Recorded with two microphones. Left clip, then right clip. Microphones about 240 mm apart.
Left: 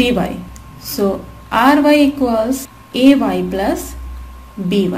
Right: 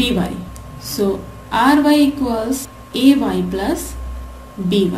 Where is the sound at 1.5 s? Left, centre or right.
Centre.